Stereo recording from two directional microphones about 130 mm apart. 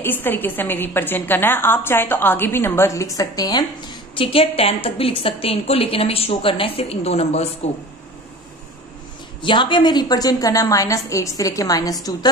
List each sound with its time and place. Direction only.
0.0 s a woman's voice: 15° left (ahead or behind)
4.2 s a woman's voice: 45° left (ahead or behind)
9.4 s a woman's voice: 40° left (ahead or behind)